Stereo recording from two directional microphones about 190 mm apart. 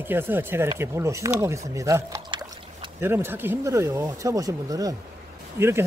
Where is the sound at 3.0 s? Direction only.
10° right (ahead or behind).